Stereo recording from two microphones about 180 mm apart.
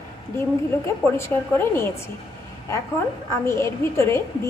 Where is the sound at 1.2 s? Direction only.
15° left (ahead or behind).